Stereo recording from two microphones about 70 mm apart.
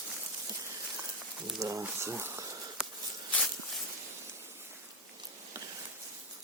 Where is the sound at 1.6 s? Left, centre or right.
Right.